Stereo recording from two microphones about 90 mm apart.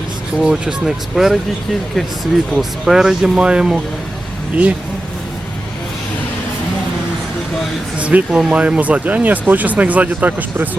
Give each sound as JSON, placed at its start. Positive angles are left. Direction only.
{"t": 0.3, "sound": "speech", "side_deg": -10}
{"t": 2.5, "sound": "speech", "side_deg": -5}
{"t": 7.9, "sound": "speech", "side_deg": -15}